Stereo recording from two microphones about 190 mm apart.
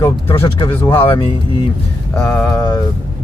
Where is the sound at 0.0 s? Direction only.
15° left (ahead or behind).